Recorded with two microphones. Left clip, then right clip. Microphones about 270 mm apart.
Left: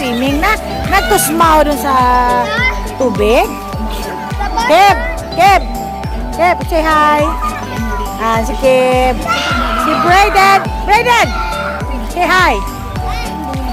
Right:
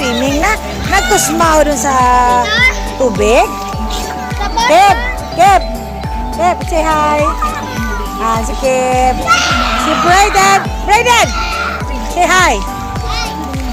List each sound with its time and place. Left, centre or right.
0.0 s music: centre
2.5 s a child's voice: centre
3.2 s a child's voice: centre
4.7 s a child's voice: centre